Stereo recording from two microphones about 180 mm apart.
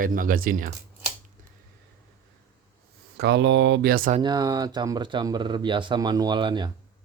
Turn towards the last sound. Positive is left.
turn(degrees=-25)  # may be behind; listen again after turning